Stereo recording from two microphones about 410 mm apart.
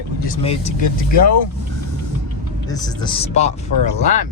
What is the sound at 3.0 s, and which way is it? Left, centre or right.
Speech, centre.